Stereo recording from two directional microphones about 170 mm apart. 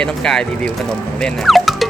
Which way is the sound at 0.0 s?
5° left (ahead or behind).